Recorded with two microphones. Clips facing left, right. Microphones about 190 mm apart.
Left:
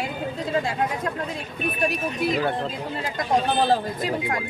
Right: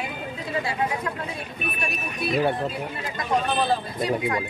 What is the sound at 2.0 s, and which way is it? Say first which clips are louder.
Speech: right 3 dB; 90° left.